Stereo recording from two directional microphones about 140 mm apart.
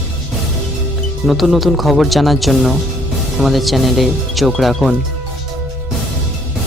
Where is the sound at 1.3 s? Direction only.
Centre (ahead or behind).